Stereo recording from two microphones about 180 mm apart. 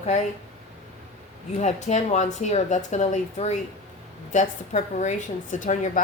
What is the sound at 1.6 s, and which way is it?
A woman's voice, 40° left (ahead or behind).